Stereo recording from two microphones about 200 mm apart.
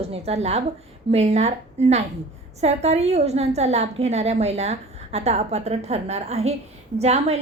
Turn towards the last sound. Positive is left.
turn(degrees=-30)  # may be behind; listen again after turning